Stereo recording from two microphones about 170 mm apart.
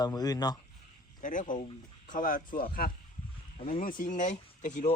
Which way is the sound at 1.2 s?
50° left (ahead or behind).